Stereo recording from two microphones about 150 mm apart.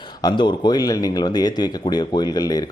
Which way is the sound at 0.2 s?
30° left (ahead or behind).